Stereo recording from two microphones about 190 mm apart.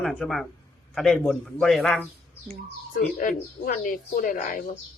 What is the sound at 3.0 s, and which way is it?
Speech, 45° left (ahead or behind).